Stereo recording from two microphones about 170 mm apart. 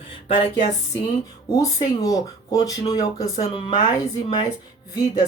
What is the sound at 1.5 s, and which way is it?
Speech, 20° left (ahead or behind).